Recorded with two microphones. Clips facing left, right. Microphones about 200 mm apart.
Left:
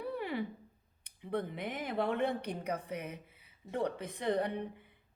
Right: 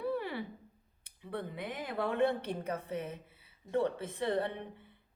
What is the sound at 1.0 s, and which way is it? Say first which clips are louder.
A woman's voice: left 4 dB; 20° left (ahead or behind).